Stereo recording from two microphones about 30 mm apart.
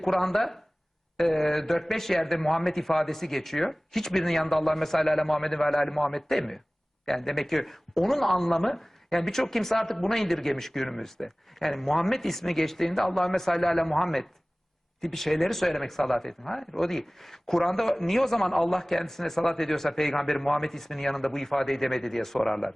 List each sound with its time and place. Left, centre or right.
0.0 s speech: centre